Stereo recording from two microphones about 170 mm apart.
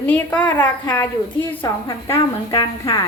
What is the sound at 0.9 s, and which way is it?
A woman's voice, 20° left (ahead or behind).